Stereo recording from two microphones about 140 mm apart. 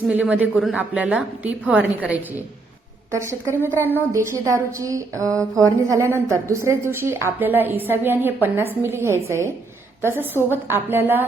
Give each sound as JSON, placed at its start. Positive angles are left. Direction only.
{"t": 0.1, "sound": "a woman's voice", "side_deg": -10}
{"t": 5.4, "sound": "speech", "side_deg": 10}
{"t": 5.9, "sound": "a woman's voice", "side_deg": -20}